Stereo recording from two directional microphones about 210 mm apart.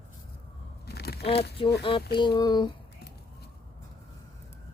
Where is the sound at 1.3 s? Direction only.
50° left (ahead or behind).